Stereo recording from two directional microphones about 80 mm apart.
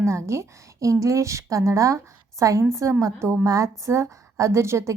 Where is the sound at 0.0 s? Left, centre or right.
Right.